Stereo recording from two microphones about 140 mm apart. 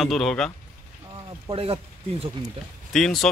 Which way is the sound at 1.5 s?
45° right (ahead or behind).